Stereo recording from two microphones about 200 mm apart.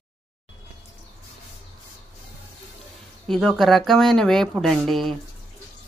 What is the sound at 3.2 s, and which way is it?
Speech, centre (ahead or behind).